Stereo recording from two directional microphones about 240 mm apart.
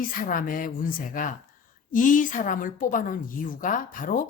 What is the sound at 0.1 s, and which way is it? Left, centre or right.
A woman's voice, left.